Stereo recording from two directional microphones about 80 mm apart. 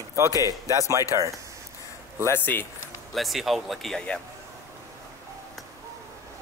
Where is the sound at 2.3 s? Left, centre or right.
Left.